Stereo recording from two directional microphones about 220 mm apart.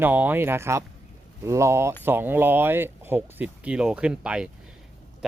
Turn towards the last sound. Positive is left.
turn(degrees=-5)  # may be behind; listen again after turning